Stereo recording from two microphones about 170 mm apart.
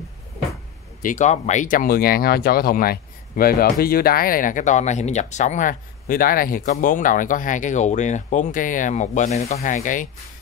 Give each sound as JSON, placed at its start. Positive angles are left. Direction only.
{"t": 1.0, "sound": "speech", "side_deg": 45}